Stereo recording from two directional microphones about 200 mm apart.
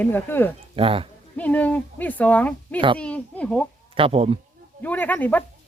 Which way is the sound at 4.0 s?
30° right (ahead or behind).